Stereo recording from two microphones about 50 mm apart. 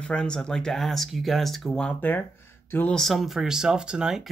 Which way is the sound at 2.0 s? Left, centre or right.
Left.